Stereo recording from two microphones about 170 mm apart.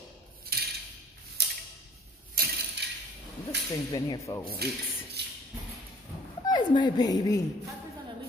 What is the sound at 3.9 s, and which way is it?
Speech, 20° left (ahead or behind).